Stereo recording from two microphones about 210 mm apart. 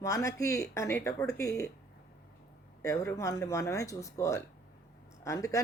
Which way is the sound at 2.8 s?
15° left (ahead or behind).